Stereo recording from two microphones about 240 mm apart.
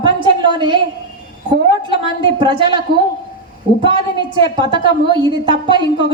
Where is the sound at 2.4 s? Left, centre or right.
Centre.